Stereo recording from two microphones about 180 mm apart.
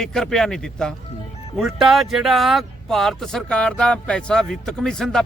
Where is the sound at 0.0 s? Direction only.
5° left (ahead or behind).